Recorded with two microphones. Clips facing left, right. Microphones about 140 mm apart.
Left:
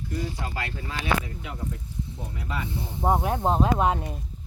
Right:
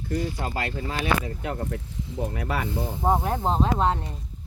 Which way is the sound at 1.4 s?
60° right (ahead or behind).